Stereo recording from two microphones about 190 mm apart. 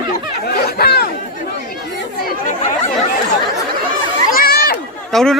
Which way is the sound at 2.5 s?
40° left (ahead or behind).